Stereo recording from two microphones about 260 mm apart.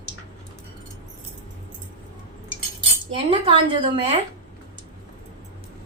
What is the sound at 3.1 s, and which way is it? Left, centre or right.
A woman's voice, centre.